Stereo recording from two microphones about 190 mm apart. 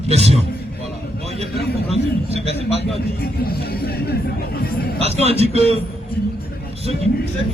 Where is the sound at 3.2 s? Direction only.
55° left (ahead or behind).